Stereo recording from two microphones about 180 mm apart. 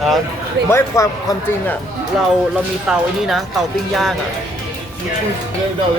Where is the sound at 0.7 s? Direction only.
15° left (ahead or behind).